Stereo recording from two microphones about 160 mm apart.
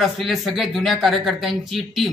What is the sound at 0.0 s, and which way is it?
A man's voice, centre (ahead or behind).